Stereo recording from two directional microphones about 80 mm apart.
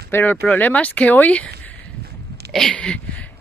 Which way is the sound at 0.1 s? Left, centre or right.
Left.